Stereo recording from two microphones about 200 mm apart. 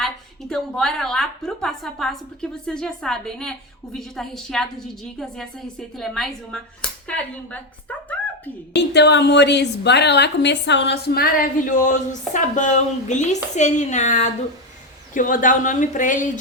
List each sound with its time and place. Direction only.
0.0 s a woman's voice: centre (ahead or behind)
8.7 s a woman's voice: 60° left (ahead or behind); by 16.4 s 40° left (ahead or behind)